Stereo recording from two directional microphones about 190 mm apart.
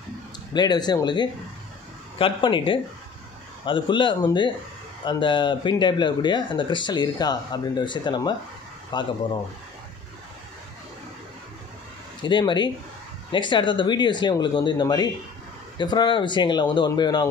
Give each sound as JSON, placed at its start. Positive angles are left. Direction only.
{"t": 0.5, "sound": "speech", "side_deg": 20}
{"t": 12.2, "sound": "speech", "side_deg": 25}